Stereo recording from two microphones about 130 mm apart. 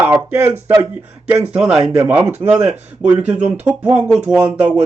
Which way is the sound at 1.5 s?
5° right (ahead or behind).